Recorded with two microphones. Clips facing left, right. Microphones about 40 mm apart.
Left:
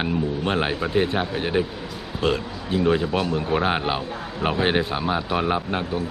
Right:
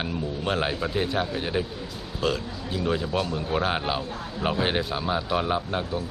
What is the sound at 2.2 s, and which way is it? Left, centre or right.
Speech, left.